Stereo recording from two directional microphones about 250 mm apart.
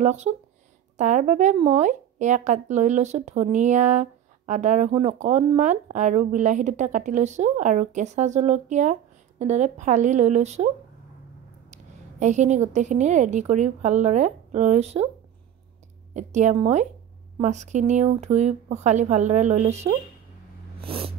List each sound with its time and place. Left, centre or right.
0.0 s speech: right
11.7 s speech: right
16.1 s a woman's voice: right
20.8 s cat: right